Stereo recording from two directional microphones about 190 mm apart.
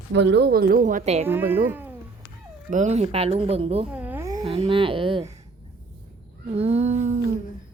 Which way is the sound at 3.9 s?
10° right (ahead or behind).